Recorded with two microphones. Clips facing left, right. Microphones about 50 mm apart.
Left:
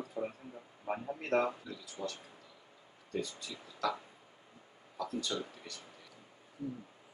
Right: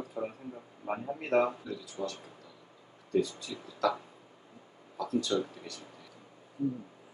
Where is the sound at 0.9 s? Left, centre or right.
Centre.